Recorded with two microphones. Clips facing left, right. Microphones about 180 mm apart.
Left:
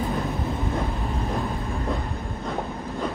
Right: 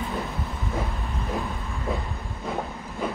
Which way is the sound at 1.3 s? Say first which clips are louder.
Left 3 dB; centre (ahead or behind).